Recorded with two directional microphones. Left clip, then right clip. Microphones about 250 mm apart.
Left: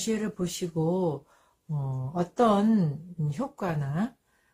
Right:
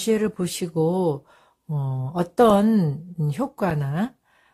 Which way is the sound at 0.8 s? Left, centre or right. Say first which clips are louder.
Right 8 dB; right.